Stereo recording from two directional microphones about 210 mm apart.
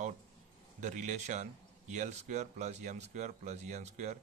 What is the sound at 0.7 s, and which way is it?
Speech, 35° right (ahead or behind).